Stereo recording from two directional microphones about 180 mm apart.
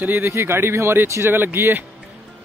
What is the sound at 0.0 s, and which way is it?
A man's voice, 10° right (ahead or behind).